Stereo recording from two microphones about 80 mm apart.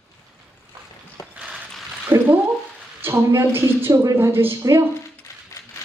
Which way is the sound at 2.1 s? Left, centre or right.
Right.